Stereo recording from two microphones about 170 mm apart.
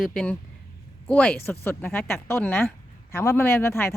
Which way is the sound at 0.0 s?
5° left (ahead or behind).